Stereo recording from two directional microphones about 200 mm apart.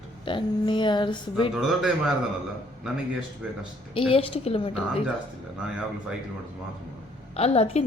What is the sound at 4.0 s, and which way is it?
Speech, 25° left (ahead or behind).